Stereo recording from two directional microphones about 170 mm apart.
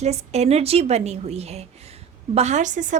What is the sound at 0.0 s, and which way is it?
Speech, 40° right (ahead or behind).